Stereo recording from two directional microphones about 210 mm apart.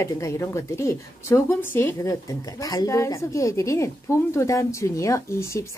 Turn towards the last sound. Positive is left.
turn(degrees=15)  # may be behind; listen again after turning